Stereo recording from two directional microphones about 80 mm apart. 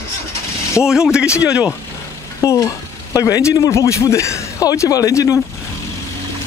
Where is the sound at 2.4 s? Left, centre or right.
Left.